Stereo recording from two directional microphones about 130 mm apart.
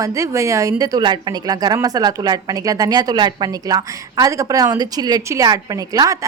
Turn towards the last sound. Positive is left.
turn(degrees=-25)  # may be behind; listen again after turning